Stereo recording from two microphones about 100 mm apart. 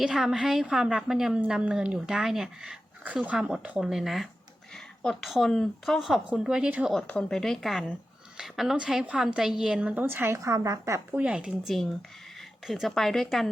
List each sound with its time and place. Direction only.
0.0 s a woman's voice: 5° right (ahead or behind)
7.1 s a woman's voice: 5° left (ahead or behind); by 9.9 s 10° right (ahead or behind)
9.9 s a woman's voice: 20° right (ahead or behind)
11.2 s speech: 10° right (ahead or behind)